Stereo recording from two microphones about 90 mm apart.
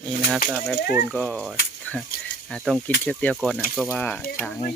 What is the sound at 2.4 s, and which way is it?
Speech, 5° left (ahead or behind).